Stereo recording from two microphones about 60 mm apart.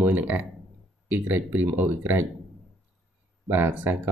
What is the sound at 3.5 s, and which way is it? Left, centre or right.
Speech, right.